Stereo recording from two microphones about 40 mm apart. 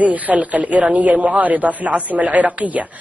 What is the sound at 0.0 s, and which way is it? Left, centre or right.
A man's voice, right.